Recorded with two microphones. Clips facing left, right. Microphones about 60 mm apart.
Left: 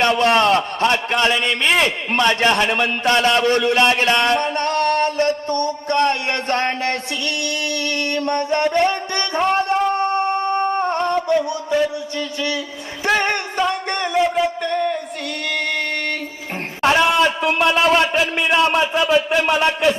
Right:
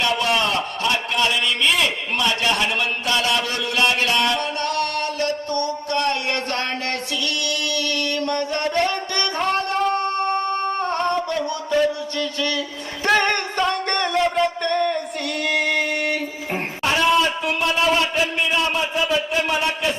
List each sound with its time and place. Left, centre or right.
0.0 s a man's voice: left
7.4 s music: left
9.9 s a sound: left
13.1 s music: centre
16.8 s a sound: left
18.3 s a man's voice: left